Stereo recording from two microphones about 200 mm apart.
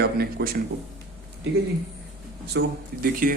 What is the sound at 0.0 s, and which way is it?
Speech, 50° right (ahead or behind).